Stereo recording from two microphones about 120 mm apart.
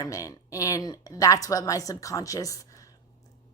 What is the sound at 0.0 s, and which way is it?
A woman's voice, 25° left (ahead or behind).